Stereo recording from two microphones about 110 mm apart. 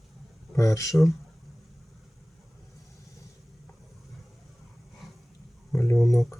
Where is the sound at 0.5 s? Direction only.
30° left (ahead or behind).